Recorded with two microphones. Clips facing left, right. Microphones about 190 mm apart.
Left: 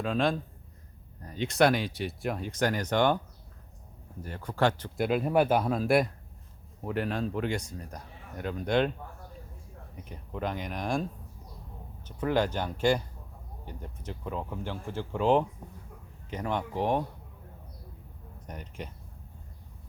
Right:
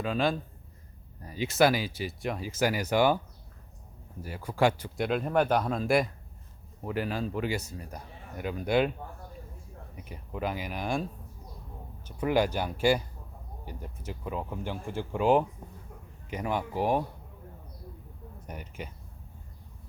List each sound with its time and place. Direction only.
0.0 s speech: centre (ahead or behind)
4.2 s speech: 10° right (ahead or behind)
4.9 s speech: 5° left (ahead or behind)
10.0 s speech: 5° right (ahead or behind)
12.0 s speech: 10° right (ahead or behind)
18.4 s speech: 5° right (ahead or behind)